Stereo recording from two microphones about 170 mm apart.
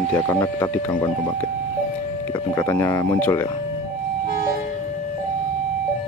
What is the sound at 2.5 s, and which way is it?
Speech, 15° left (ahead or behind).